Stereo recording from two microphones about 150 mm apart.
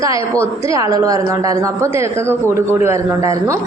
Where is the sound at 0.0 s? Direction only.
20° right (ahead or behind).